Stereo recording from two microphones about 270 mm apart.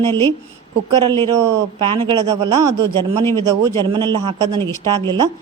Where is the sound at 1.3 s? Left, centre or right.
Centre.